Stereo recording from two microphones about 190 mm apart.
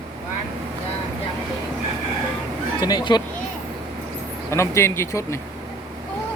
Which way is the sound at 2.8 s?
20° left (ahead or behind).